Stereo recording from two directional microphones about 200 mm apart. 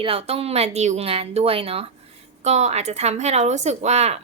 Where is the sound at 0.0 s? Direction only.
30° right (ahead or behind).